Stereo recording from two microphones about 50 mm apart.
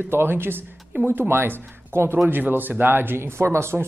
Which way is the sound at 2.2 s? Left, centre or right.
Right.